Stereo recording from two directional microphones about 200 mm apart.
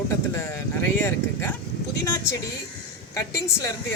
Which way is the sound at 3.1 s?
15° left (ahead or behind).